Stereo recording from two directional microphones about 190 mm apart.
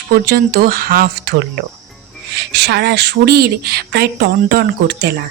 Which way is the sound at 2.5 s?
60° right (ahead or behind).